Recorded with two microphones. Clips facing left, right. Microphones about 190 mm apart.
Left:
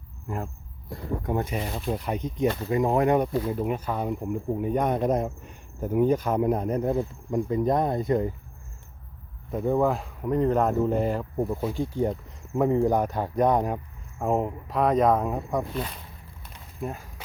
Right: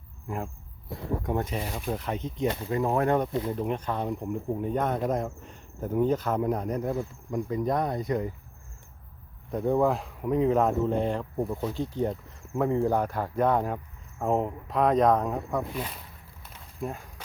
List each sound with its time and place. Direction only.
0.3 s speech: centre (ahead or behind); by 8.3 s 25° left (ahead or behind)
9.5 s speech: centre (ahead or behind)
16.4 s a sound: centre (ahead or behind)